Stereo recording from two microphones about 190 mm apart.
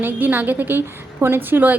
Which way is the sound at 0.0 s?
10° right (ahead or behind).